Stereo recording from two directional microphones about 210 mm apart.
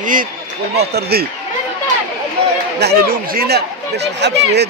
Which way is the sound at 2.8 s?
45° right (ahead or behind).